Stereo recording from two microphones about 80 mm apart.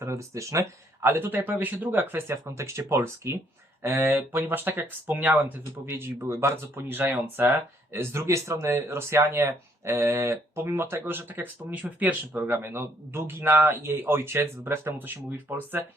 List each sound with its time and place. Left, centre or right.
0.0 s speech: right
7.9 s speech: right